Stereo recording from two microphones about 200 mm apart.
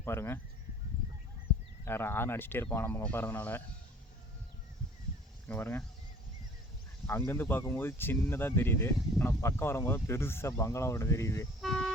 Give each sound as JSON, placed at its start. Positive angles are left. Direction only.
{"t": 0.0, "sound": "speech", "side_deg": 10}
{"t": 1.8, "sound": "speech", "side_deg": 10}
{"t": 5.5, "sound": "speech", "side_deg": 10}
{"t": 7.1, "sound": "speech", "side_deg": 10}
{"t": 11.6, "sound": "a sound", "side_deg": 0}